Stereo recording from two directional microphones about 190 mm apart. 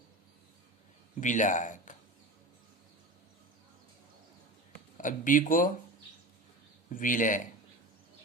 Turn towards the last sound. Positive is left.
turn(degrees=45)  # may be behind; listen again after turning